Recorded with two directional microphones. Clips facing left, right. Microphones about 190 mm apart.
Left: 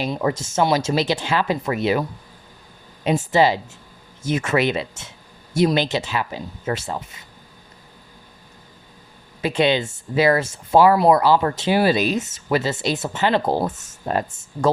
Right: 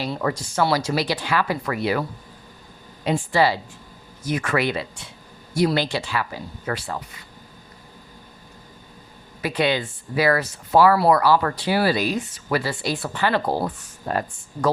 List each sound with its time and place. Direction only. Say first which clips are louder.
0.0 s speech: left 3 dB; 20° left (ahead or behind)
3.3 s speech: left 3 dB; 20° left (ahead or behind)
9.4 s speech: left 3 dB; 25° left (ahead or behind)